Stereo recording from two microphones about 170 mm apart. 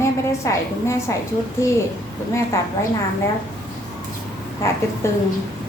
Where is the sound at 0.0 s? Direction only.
15° left (ahead or behind).